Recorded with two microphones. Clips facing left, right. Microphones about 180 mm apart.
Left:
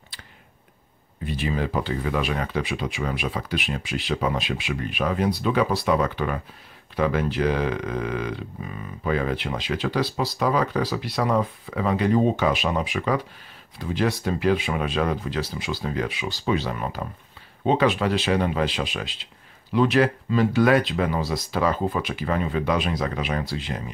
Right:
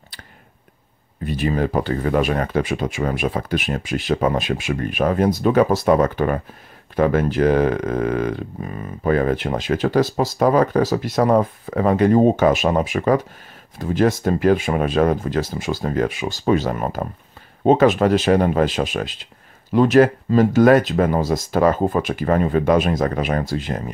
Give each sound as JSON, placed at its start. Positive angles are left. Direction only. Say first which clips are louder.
{"t": 1.2, "sound": "speech", "louder": "right 6 dB", "side_deg": -45}